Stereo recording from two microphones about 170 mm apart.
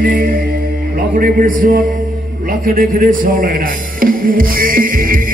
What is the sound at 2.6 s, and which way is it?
Music, 55° right (ahead or behind).